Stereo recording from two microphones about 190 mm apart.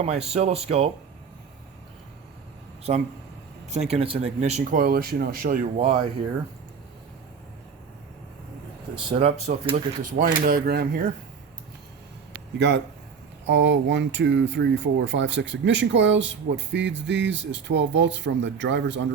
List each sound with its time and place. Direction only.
0.0 s speech: 35° right (ahead or behind)
2.9 s speech: 35° right (ahead or behind)
9.0 s speech: 25° right (ahead or behind)
10.4 s speech: 55° right (ahead or behind)
12.5 s a man's voice: 65° right (ahead or behind)